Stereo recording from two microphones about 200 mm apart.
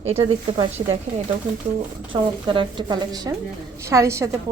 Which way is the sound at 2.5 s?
25° right (ahead or behind).